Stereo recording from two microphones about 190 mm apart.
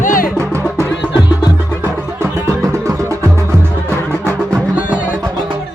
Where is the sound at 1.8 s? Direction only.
15° right (ahead or behind).